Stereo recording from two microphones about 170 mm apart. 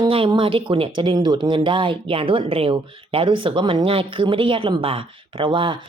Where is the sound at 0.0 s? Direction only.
30° right (ahead or behind).